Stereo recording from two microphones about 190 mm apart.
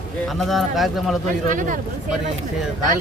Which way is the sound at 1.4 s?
45° right (ahead or behind).